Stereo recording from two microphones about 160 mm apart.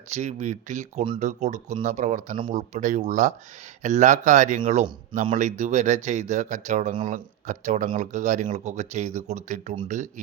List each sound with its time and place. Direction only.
0.1 s speech: 45° right (ahead or behind)